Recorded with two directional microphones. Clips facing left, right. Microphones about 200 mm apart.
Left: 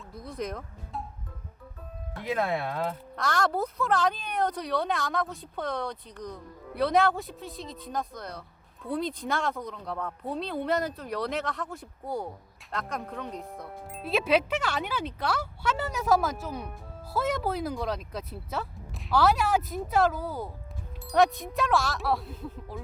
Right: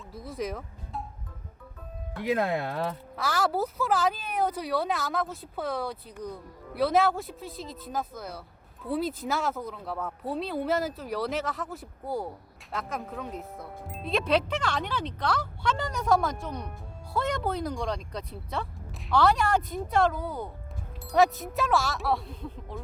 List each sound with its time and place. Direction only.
0.1 s speech: 5° right (ahead or behind)
2.3 s speech: 20° right (ahead or behind)
3.2 s speech: 5° right (ahead or behind)